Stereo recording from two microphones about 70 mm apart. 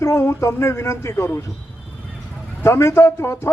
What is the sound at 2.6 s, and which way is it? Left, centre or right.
Speech, left.